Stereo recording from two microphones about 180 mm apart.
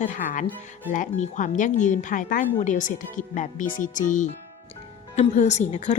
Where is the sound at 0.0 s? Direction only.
45° left (ahead or behind).